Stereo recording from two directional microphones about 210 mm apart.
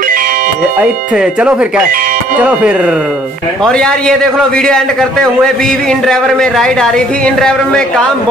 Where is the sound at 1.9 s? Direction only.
40° right (ahead or behind).